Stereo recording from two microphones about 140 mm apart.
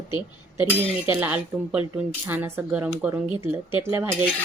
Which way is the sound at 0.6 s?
15° right (ahead or behind).